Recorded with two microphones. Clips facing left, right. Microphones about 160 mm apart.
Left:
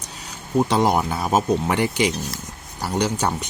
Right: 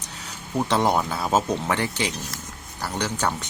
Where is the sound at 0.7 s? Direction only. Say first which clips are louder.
Right 2 dB; 15° left (ahead or behind).